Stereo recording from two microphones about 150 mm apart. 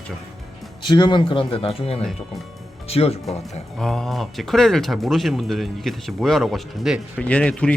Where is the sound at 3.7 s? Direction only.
5° left (ahead or behind).